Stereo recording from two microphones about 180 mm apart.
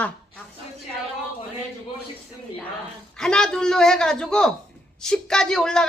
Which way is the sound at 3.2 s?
5° left (ahead or behind).